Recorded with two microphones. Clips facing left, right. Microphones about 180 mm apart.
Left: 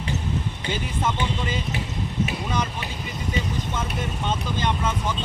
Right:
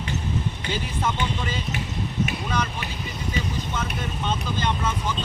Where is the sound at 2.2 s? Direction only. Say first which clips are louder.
Left 1 dB; 20° left (ahead or behind).